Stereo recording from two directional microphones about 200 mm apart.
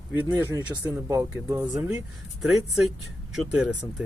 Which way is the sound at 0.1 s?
10° right (ahead or behind).